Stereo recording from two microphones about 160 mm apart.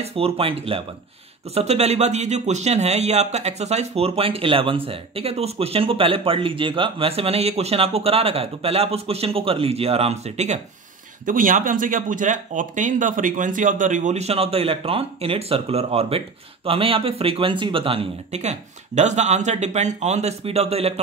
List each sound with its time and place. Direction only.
0.0 s speech: 35° right (ahead or behind)
11.2 s speech: 60° right (ahead or behind); by 21.0 s 40° right (ahead or behind)